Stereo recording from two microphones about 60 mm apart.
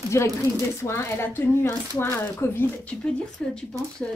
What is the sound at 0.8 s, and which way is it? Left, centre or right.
Speech, left.